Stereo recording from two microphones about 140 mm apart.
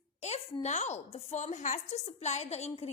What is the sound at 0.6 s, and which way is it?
A woman's voice, 55° left (ahead or behind).